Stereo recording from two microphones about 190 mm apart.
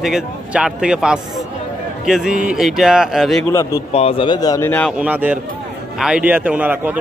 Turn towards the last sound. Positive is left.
turn(degrees=-10)  # may be behind; listen again after turning